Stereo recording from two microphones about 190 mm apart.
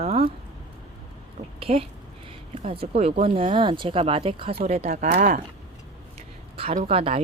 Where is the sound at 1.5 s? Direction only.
30° right (ahead or behind).